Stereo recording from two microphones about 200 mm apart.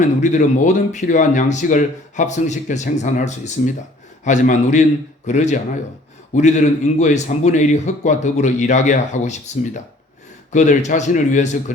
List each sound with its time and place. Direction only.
0.0 s speech: 40° left (ahead or behind)